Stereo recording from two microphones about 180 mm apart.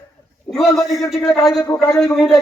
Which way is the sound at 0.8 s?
Centre (ahead or behind).